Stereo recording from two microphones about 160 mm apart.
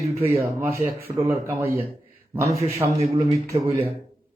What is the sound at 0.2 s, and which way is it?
A man's voice, 15° right (ahead or behind).